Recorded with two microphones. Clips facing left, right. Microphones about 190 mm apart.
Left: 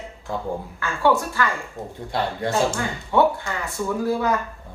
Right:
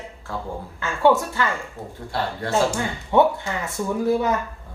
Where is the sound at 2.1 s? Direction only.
15° left (ahead or behind).